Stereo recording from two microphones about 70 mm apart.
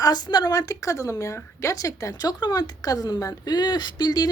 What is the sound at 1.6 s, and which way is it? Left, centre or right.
A woman's voice, left.